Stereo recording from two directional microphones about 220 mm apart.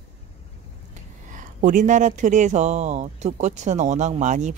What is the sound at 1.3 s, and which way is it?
Speech, 35° right (ahead or behind).